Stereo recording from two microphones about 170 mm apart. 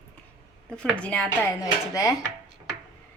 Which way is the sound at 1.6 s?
20° left (ahead or behind).